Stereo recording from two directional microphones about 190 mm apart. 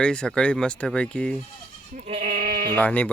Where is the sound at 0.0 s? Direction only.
5° left (ahead or behind).